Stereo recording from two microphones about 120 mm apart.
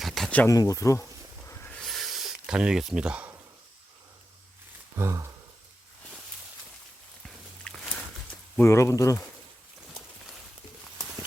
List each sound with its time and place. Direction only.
0.0 s a sound: centre (ahead or behind)
0.4 s speech: 30° left (ahead or behind)
1.5 s hiss: 15° left (ahead or behind)
1.8 s a sound: centre (ahead or behind)
4.9 s speech: 25° right (ahead or behind)
7.3 s walk: 5° left (ahead or behind)
8.5 s speech: 20° left (ahead or behind)